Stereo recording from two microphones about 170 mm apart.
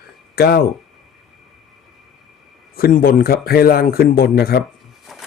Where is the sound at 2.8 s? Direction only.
60° left (ahead or behind).